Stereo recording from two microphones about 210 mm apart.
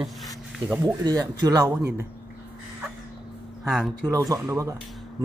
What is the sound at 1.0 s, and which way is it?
Speech, 20° right (ahead or behind).